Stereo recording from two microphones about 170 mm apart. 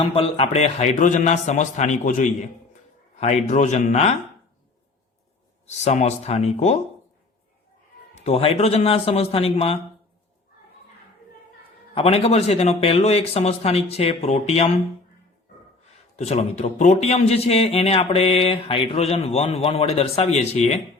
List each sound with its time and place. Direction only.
0.0 s a man's voice: 35° left (ahead or behind)
5.6 s a man's voice: 40° left (ahead or behind)
8.2 s a man's voice: 35° left (ahead or behind)
11.9 s a man's voice: 35° left (ahead or behind)
16.1 s a man's voice: 40° left (ahead or behind)